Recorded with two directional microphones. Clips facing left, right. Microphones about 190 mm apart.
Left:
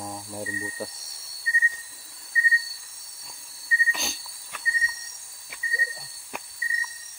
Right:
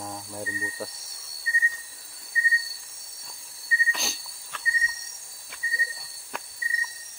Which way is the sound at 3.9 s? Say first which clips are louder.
Even; centre (ahead or behind).